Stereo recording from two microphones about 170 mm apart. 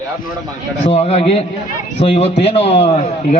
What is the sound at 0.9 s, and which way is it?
A man's voice, 35° left (ahead or behind).